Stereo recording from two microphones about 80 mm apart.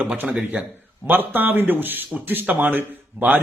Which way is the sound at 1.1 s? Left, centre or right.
Right.